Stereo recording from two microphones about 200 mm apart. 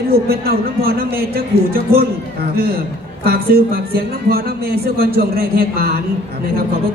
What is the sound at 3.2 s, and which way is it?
Speech, 50° right (ahead or behind).